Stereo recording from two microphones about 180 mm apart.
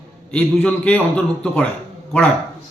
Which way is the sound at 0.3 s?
5° left (ahead or behind).